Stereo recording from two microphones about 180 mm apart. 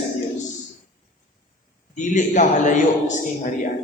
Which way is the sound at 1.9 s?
45° left (ahead or behind).